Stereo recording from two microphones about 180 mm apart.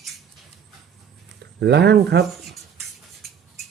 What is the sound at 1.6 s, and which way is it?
Speech, 70° right (ahead or behind).